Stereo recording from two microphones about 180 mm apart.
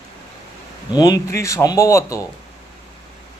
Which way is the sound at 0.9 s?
20° left (ahead or behind).